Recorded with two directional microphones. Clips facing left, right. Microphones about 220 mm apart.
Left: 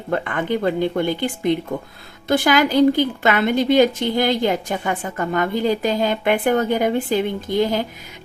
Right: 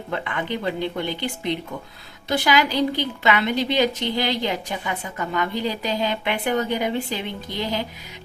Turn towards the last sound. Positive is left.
turn(degrees=50)  # may be behind; listen again after turning